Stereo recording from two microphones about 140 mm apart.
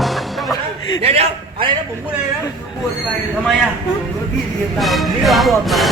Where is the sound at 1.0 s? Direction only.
45° right (ahead or behind).